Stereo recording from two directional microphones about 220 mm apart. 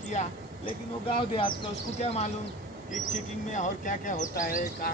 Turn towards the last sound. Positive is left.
turn(degrees=40)  # may be behind; listen again after turning